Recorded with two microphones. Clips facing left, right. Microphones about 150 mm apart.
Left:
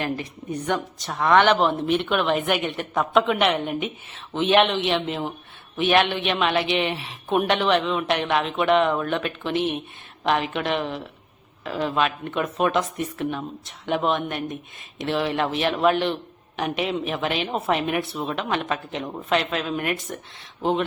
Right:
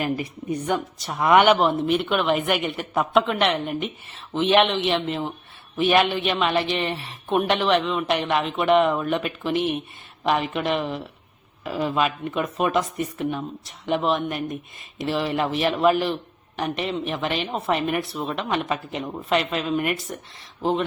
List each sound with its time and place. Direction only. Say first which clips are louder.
0.0 s speech: right 2 dB; 10° right (ahead or behind)